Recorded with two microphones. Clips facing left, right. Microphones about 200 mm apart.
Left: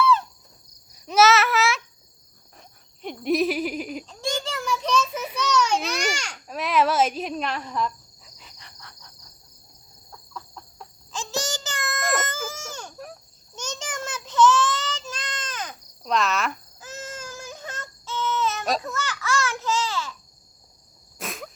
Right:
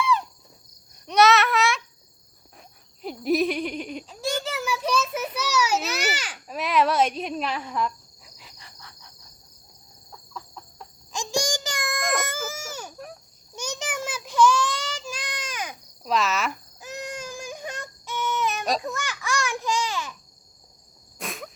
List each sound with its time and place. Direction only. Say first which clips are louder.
0.0 s insect: left 3 dB; 15° right (ahead or behind)
0.9 s a sound: even; 5° left (ahead or behind)
2.6 s cricket: right 1 dB; centre (ahead or behind)
4.0 s a sound: right 1 dB; 10° right (ahead or behind)
8.4 s insect: even; 5° right (ahead or behind)
10.1 s chicken: even; centre (ahead or behind)
11.1 s child singing: right 3 dB; 15° right (ahead or behind)
12.2 s baby cry: even; 10° right (ahead or behind)
13.6 s child singing: right 2 dB; 10° right (ahead or behind)
16.8 s baby cry: right 3 dB; 15° right (ahead or behind)
21.2 s insect: even; centre (ahead or behind)